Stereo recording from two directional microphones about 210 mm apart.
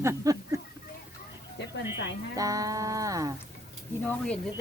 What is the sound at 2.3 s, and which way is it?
Speech, 15° right (ahead or behind).